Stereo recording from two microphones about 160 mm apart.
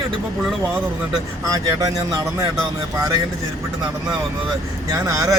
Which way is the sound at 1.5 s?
25° right (ahead or behind).